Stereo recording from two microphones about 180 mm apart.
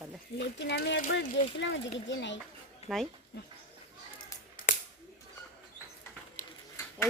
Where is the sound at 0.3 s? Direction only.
70° left (ahead or behind).